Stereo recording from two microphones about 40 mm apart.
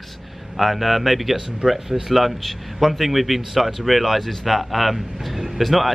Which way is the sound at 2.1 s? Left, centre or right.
Centre.